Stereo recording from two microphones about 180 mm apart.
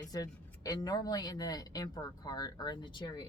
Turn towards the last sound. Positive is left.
turn(degrees=25)  # may be behind; listen again after turning